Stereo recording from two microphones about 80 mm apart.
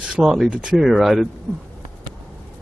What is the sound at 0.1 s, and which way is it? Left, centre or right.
Speech, centre.